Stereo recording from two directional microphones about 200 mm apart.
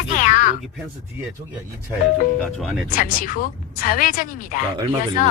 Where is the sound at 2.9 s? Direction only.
45° left (ahead or behind).